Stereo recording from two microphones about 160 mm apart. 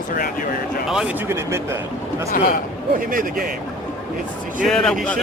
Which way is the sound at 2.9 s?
60° right (ahead or behind).